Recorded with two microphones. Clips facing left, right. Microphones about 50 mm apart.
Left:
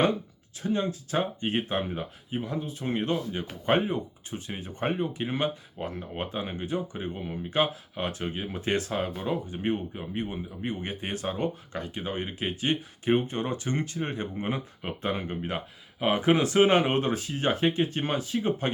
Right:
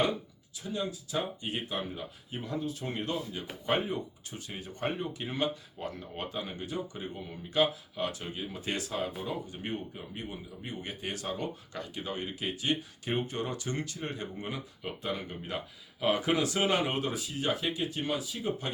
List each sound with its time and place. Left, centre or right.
0.6 s a man's voice: left
2.3 s a man's voice: left